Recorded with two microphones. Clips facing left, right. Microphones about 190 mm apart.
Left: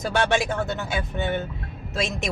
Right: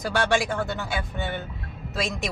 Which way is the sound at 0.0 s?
20° left (ahead or behind).